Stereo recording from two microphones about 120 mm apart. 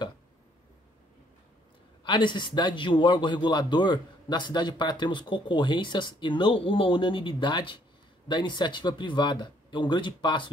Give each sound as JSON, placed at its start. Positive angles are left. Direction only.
{"t": 2.0, "sound": "a man's voice", "side_deg": 40}